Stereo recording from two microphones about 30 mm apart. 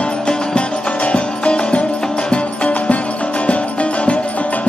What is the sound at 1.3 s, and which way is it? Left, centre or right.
Music, left.